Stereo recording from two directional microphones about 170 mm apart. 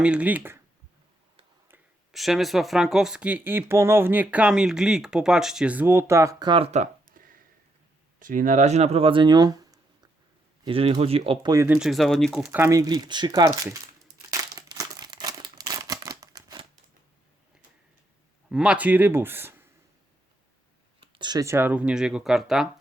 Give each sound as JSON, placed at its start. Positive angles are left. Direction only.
{"t": 0.0, "sound": "speech", "side_deg": -5}
{"t": 2.1, "sound": "speech", "side_deg": 0}
{"t": 6.5, "sound": "a sound", "side_deg": -35}
{"t": 8.2, "sound": "speech", "side_deg": -50}
{"t": 10.6, "sound": "speech", "side_deg": -35}
{"t": 11.5, "sound": "speech", "side_deg": -15}
{"t": 11.8, "sound": "speech", "side_deg": 0}
{"t": 12.5, "sound": "speech", "side_deg": -15}
{"t": 14.3, "sound": "crumpling", "side_deg": -20}
{"t": 18.4, "sound": "speech", "side_deg": -5}
{"t": 21.0, "sound": "speech", "side_deg": -30}